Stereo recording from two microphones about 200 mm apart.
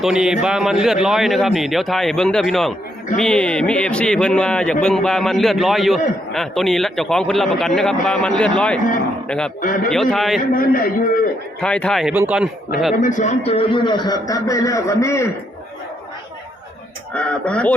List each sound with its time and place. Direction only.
0.0 s a man's voice: 5° right (ahead or behind)
9.6 s a man's voice: 40° left (ahead or behind)
9.9 s a man's voice: centre (ahead or behind)
10.5 s a man's voice: 45° left (ahead or behind)
11.6 s a man's voice: 5° left (ahead or behind)
13.0 s a man's voice: 40° left (ahead or behind); by 15.3 s 15° left (ahead or behind)
17.2 s a man's voice: 5° left (ahead or behind)